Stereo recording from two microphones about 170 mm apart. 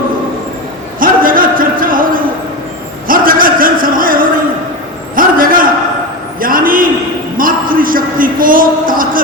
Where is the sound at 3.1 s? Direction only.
55° right (ahead or behind).